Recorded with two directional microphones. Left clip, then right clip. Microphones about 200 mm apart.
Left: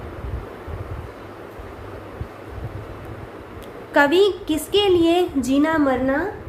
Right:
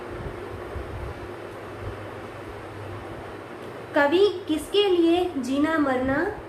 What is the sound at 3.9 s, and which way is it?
A woman's voice, 50° left (ahead or behind).